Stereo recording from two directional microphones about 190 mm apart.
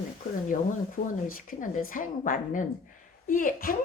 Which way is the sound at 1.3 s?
50° left (ahead or behind).